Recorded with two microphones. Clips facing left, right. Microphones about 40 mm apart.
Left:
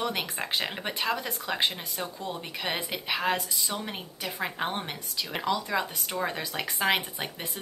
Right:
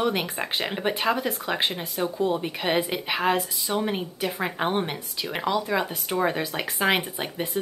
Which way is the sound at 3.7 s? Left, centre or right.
Right.